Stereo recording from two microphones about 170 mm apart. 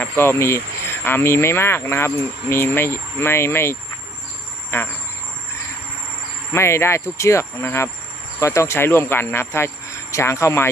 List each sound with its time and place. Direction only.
0.0 s speech: 15° left (ahead or behind)
6.5 s speech: 15° left (ahead or behind)